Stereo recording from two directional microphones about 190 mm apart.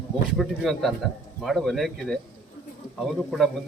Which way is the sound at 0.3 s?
Centre (ahead or behind).